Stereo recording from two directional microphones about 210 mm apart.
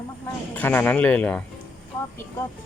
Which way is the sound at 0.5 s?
10° left (ahead or behind).